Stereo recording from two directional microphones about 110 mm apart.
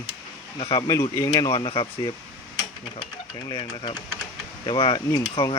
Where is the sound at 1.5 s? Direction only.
50° left (ahead or behind).